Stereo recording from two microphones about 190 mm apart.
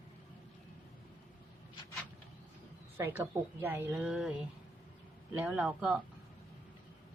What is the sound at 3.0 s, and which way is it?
A woman's voice, 10° right (ahead or behind).